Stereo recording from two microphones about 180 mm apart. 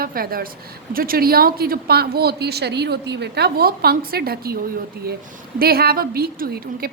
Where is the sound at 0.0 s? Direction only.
55° right (ahead or behind).